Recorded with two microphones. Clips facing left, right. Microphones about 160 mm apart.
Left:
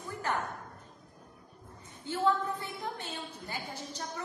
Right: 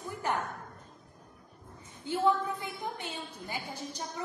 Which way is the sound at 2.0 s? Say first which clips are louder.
Right 1 dB; 15° right (ahead or behind).